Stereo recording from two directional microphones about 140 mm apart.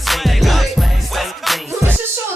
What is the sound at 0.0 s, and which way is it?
Music, centre (ahead or behind).